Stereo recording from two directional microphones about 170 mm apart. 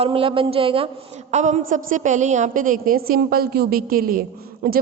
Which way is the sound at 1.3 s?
45° right (ahead or behind).